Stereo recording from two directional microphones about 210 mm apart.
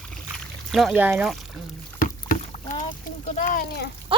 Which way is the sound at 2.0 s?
35° left (ahead or behind).